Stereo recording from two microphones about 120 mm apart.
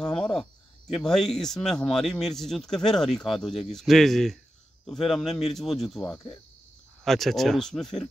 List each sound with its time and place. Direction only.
0.0 s cricket: 5° left (ahead or behind)
0.9 s speech: 5° left (ahead or behind)